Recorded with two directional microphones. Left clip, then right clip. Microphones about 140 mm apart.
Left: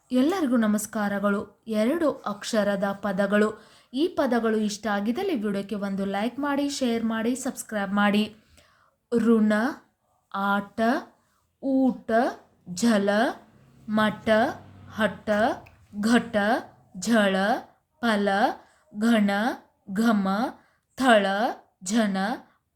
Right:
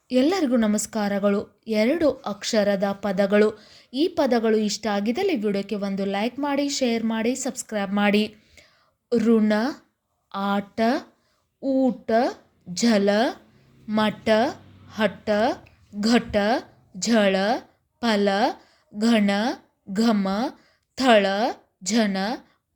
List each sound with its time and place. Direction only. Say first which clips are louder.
0.1 s a woman's voice: right 3 dB; 25° right (ahead or behind)